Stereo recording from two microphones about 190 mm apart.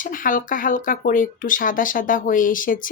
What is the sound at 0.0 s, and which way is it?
Speech, 45° left (ahead or behind).